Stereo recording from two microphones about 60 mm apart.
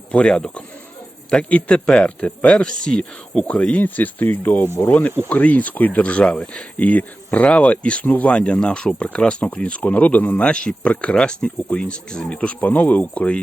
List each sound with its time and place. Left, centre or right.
0.1 s speech: centre
1.5 s speech: left
1.7 s speech: centre
3.8 s speech: left; by 6.7 s centre
6.7 s speech: left
8.0 s speech: left
8.3 s speech: centre
11.1 s speech: centre; by 13.4 s left